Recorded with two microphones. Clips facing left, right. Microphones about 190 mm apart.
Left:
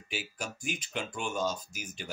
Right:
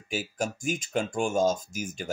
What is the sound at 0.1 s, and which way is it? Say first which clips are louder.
Speech: right 8 dB; 45° right (ahead or behind).